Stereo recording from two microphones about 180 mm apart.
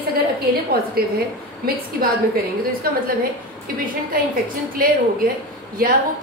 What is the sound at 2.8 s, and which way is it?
Speech, 55° right (ahead or behind).